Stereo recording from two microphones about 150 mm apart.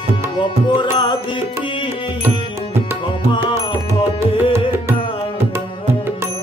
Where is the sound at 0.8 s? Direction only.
30° left (ahead or behind).